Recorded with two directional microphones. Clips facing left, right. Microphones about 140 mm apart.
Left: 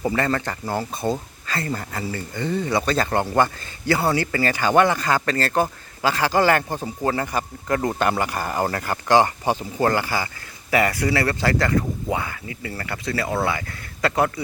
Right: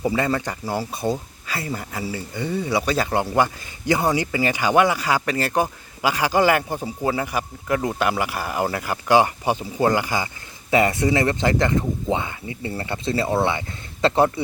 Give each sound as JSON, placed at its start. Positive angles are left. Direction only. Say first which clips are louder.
{"t": 0.0, "sound": "speech", "louder": "right 1 dB", "side_deg": -10}